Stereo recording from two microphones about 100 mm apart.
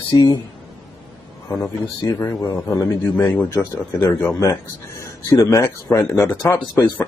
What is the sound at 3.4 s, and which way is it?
Speech, 30° left (ahead or behind).